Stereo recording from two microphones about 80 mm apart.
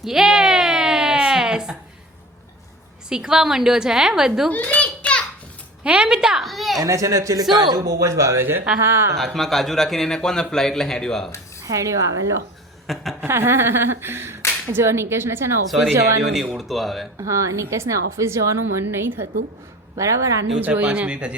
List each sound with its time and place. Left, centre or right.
0.0 s a sound: centre
3.1 s a woman's voice: centre
4.5 s a sound: left
5.8 s a woman's voice: centre
6.7 s speech: right
7.5 s a woman's voice: right
9.1 s a man's voice: centre
11.6 s speech: right
12.9 s a man's voice: centre
13.2 s a woman's voice: right
15.7 s a man's voice: centre
17.2 s a woman's voice: right
20.0 s a woman's voice: right
20.6 s a woman's voice: right